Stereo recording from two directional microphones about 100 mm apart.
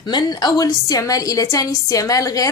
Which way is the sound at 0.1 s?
45° left (ahead or behind).